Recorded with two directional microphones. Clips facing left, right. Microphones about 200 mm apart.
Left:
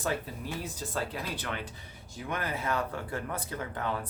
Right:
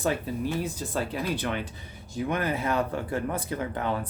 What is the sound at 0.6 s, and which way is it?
Speech, 15° right (ahead or behind).